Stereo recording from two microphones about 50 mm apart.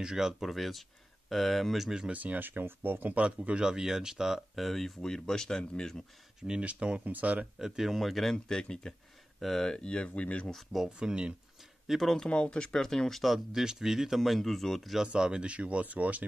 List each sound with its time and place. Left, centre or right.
0.0 s speech: centre
2.1 s speech: right
3.2 s speech: right
3.6 s speech: centre
6.4 s speech: right
7.5 s speech: centre; by 10.5 s left
10.5 s speech: centre
10.9 s speech: centre
11.9 s speech: centre
12.3 s speech: centre
13.5 s speech: centre
15.0 s speech: centre; by 16.3 s right